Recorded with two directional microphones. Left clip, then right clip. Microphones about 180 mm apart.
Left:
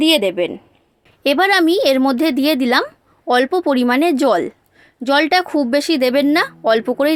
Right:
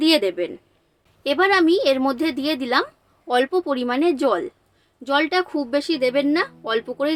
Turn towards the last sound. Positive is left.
turn(degrees=45)  # may be behind; listen again after turning